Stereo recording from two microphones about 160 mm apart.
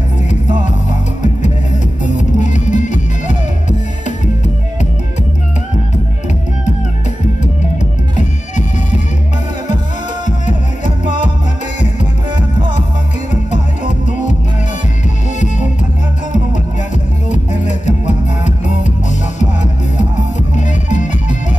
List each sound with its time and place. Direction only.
2.0 s music: 50° left (ahead or behind)
20.5 s music: 50° left (ahead or behind)